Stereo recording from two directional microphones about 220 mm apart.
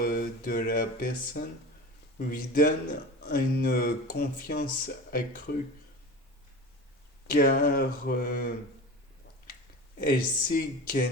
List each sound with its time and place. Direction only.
0.0 s speech: 40° left (ahead or behind)
7.3 s speech: 40° left (ahead or behind)
10.1 s speech: 40° left (ahead or behind)